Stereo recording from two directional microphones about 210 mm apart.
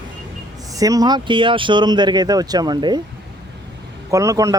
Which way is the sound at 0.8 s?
15° right (ahead or behind).